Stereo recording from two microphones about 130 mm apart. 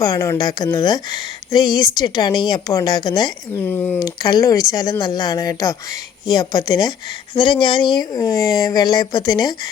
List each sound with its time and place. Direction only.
0.0 s speech: 25° left (ahead or behind)
3.6 s speech: 15° left (ahead or behind)
4.0 s speech: 30° left (ahead or behind)